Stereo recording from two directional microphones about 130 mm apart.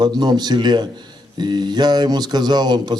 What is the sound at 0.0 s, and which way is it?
Speech, 35° right (ahead or behind).